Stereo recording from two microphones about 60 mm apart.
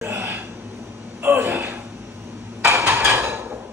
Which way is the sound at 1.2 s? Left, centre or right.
Right.